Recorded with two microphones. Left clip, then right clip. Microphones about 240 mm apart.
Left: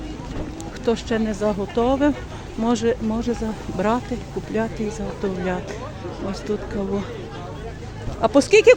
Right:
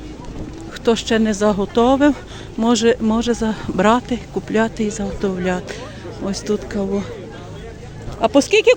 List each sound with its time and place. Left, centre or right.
0.9 s speech: right
8.2 s speech: centre